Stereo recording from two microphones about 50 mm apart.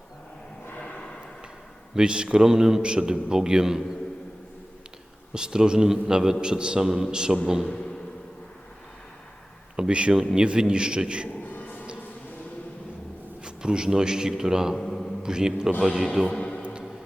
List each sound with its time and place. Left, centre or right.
0.8 s a sound: centre
2.0 s a man's voice: centre
5.3 s a man's voice: centre
9.7 s a man's voice: centre
11.5 s a sound: left
13.4 s speech: centre
14.8 s a man's voice: centre
15.2 s a man's voice: centre